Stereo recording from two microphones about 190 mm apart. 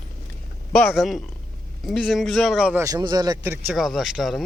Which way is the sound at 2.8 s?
20° right (ahead or behind).